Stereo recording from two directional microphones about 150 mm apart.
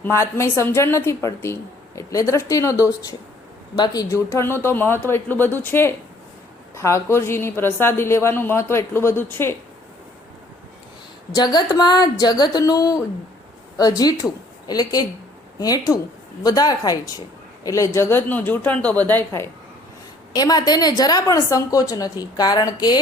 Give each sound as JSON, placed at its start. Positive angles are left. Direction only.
{"t": 0.0, "sound": "a woman's voice", "side_deg": 15}
{"t": 11.3, "sound": "a woman's voice", "side_deg": 25}
{"t": 20.3, "sound": "a woman's voice", "side_deg": 25}